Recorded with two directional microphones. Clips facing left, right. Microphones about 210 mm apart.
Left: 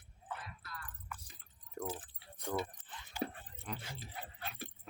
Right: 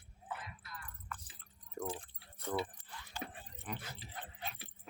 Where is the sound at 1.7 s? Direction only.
5° left (ahead or behind).